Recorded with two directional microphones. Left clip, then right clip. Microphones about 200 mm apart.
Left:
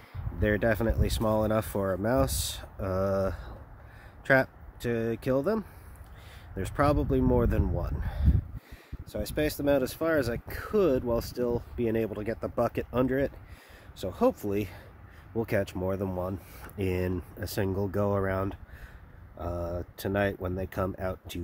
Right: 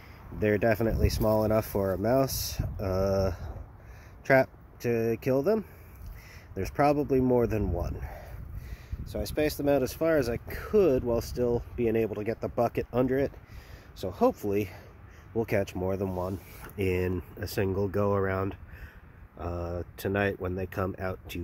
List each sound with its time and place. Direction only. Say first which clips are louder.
0.4 s speech: right 1 dB; centre (ahead or behind)
9.0 s a sound: even; 20° left (ahead or behind)
9.7 s speech: even; centre (ahead or behind)
14.1 s speech: right 1 dB; 20° left (ahead or behind)
15.3 s speech: right 1 dB; centre (ahead or behind)